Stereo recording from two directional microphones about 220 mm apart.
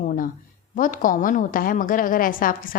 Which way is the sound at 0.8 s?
35° left (ahead or behind).